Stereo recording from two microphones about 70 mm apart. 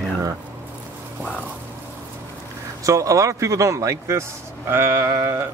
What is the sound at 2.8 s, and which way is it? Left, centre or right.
A man's voice, right.